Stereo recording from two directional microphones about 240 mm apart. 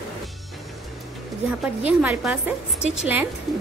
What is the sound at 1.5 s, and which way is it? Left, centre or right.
A woman's voice, centre.